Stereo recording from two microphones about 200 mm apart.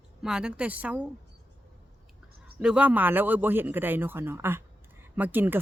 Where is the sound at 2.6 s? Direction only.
5° right (ahead or behind).